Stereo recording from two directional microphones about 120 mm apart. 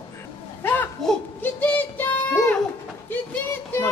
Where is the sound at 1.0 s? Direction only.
5° left (ahead or behind).